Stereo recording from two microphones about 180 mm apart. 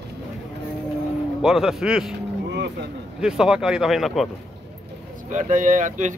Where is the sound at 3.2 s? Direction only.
5° right (ahead or behind).